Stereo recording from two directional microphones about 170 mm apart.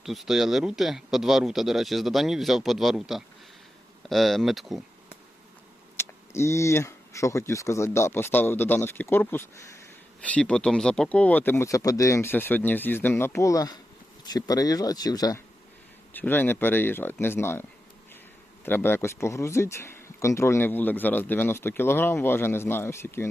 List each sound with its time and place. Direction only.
0.0 s speech: centre (ahead or behind)
6.0 s speech: 15° left (ahead or behind)
16.1 s speech: 10° left (ahead or behind)